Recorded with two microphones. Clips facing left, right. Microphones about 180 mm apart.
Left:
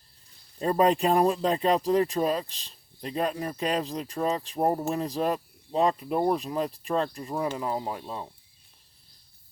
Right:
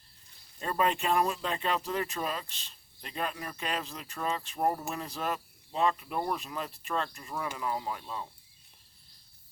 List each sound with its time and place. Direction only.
0.6 s speech: 35° left (ahead or behind)